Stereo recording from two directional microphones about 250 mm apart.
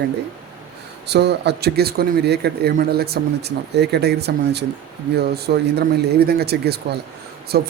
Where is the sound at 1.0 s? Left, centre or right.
Right.